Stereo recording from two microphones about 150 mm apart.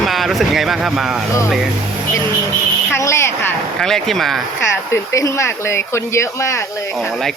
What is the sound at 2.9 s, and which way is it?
Speech, 20° left (ahead or behind).